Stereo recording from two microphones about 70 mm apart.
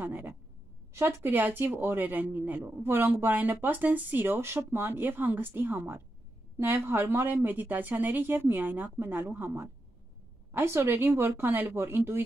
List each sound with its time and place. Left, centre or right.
0.0 s speech: right
0.9 s speech: right